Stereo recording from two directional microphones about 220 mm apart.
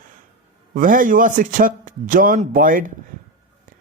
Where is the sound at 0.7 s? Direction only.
40° right (ahead or behind).